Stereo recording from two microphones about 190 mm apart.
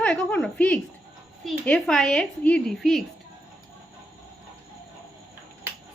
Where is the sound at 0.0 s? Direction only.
5° left (ahead or behind).